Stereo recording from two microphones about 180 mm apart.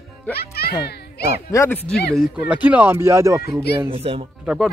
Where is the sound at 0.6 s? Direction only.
60° left (ahead or behind).